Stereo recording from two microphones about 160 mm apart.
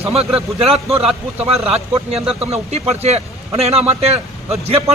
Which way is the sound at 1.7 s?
40° right (ahead or behind).